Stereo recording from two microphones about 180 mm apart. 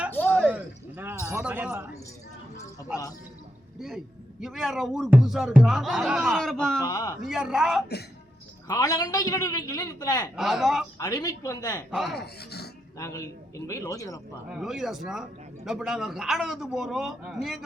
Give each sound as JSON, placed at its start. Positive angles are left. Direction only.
{"t": 0.1, "sound": "a sound", "side_deg": 10}
{"t": 0.4, "sound": "a sound", "side_deg": -10}
{"t": 1.4, "sound": "speech", "side_deg": -5}
{"t": 3.8, "sound": "a man's voice", "side_deg": 0}
{"t": 6.8, "sound": "speech", "side_deg": 20}
{"t": 7.2, "sound": "a man's voice", "side_deg": 0}
{"t": 8.6, "sound": "a man's voice", "side_deg": 20}
{"t": 10.3, "sound": "a man's voice", "side_deg": 0}
{"t": 10.9, "sound": "a man's voice", "side_deg": 20}
{"t": 11.9, "sound": "a man's voice", "side_deg": 0}
{"t": 12.1, "sound": "speech", "side_deg": 60}
{"t": 13.0, "sound": "speech", "side_deg": 15}
{"t": 14.5, "sound": "a man's voice", "side_deg": 0}